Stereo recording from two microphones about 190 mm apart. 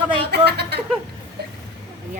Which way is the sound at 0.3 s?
60° right (ahead or behind).